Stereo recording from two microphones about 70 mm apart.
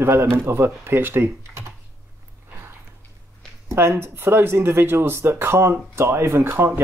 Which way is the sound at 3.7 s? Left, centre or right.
Right.